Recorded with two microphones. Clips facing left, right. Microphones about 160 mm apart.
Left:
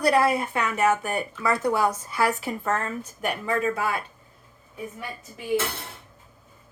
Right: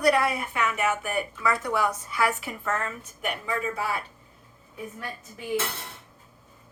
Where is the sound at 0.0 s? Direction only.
30° left (ahead or behind); by 3.9 s 55° left (ahead or behind).